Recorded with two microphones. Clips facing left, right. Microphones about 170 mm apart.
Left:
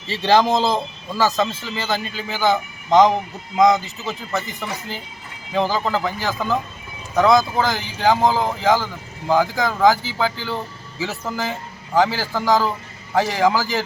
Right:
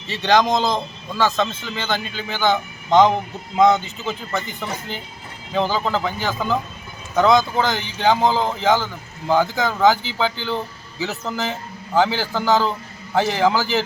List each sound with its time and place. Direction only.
0.1 s a man's voice: 30° left (ahead or behind)
0.3 s speech: 5° left (ahead or behind)
5.5 s speech: 5° left (ahead or behind)